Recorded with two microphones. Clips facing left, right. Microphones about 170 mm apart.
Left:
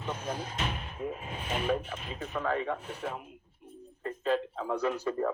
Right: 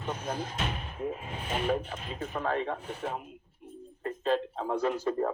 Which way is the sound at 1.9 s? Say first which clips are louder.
Right 1 dB; 30° right (ahead or behind).